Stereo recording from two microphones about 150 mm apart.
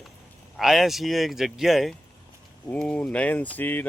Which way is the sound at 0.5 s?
Centre (ahead or behind).